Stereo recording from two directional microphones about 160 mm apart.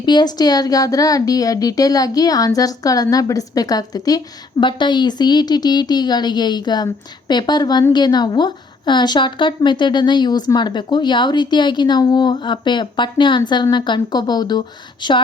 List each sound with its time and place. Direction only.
0.0 s a woman's voice: 25° left (ahead or behind)